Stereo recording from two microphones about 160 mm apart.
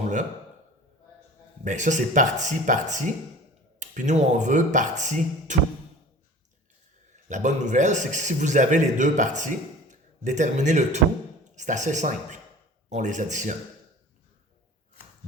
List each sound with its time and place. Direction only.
1.6 s a man's voice: 50° right (ahead or behind)
7.3 s a man's voice: 50° right (ahead or behind)